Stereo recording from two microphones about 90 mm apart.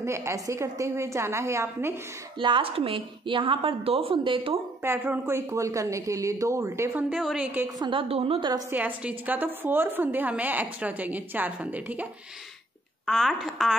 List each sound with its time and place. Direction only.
0.0 s a woman's voice: 30° right (ahead or behind)
2.3 s a woman's voice: 70° right (ahead or behind)
4.8 s a woman's voice: 25° right (ahead or behind)
7.2 s speech: centre (ahead or behind)
7.8 s a woman's voice: 75° right (ahead or behind)
8.6 s a woman's voice: 20° right (ahead or behind)
13.0 s speech: 5° left (ahead or behind)